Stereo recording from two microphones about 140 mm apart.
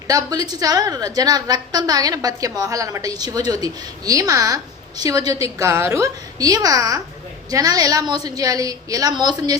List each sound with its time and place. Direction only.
0.1 s a woman's voice: 25° right (ahead or behind)